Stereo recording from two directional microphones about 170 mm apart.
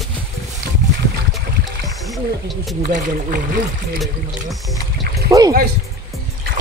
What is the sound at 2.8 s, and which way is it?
Speech, 50° right (ahead or behind).